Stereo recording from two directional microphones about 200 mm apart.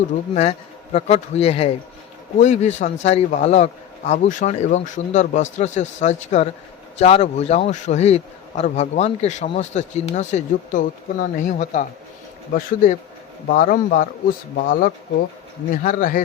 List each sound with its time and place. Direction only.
0.9 s a man's voice: 30° left (ahead or behind)